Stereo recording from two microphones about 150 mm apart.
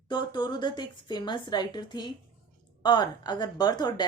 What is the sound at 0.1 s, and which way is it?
A woman's voice, 30° left (ahead or behind).